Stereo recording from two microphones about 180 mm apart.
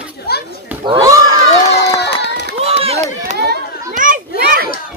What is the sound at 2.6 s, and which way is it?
Run, 35° right (ahead or behind).